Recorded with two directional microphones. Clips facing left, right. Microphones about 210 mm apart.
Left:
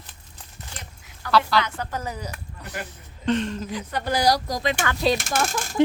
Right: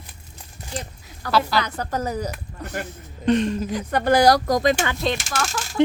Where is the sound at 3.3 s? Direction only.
15° right (ahead or behind).